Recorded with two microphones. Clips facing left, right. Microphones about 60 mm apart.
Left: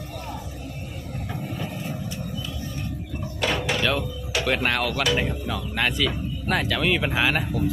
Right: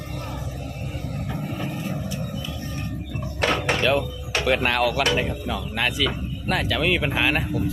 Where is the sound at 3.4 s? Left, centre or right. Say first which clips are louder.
Right 3 dB; right.